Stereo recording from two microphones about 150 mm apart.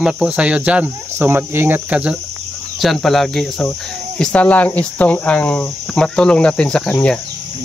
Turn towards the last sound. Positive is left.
turn(degrees=5)  # may be behind; listen again after turning